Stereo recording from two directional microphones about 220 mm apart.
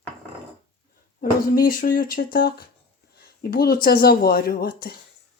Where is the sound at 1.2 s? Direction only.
40° left (ahead or behind).